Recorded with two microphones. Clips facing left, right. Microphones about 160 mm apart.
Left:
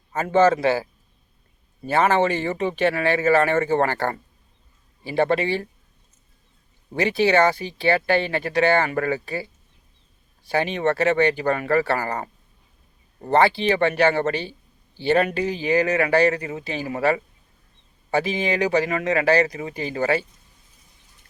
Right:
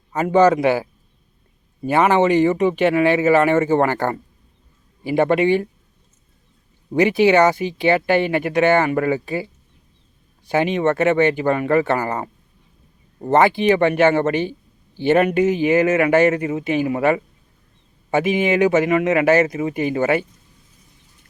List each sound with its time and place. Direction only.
0.1 s speech: 15° right (ahead or behind)
1.9 s speech: 15° right (ahead or behind)
6.9 s speech: 20° right (ahead or behind)